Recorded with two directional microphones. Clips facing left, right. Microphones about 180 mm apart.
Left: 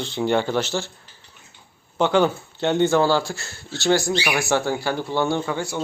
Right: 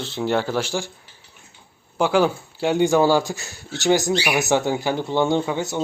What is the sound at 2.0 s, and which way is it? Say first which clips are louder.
Speech: even; 5° right (ahead or behind).